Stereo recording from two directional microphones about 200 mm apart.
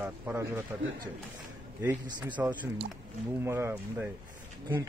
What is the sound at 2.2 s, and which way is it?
A man's voice, 10° right (ahead or behind).